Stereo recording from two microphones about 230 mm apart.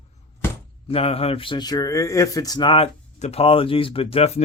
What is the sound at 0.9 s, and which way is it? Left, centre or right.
Speech, left.